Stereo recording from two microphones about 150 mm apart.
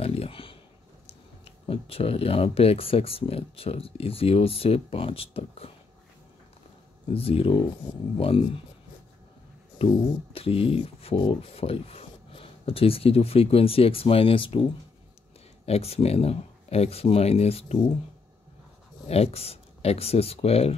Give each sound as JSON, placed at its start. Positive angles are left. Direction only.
{"t": 0.0, "sound": "a sound", "side_deg": 40}
{"t": 1.0, "sound": "speech", "side_deg": 40}
{"t": 7.2, "sound": "speech", "side_deg": 40}
{"t": 9.8, "sound": "speech", "side_deg": 40}
{"t": 19.0, "sound": "speech", "side_deg": 45}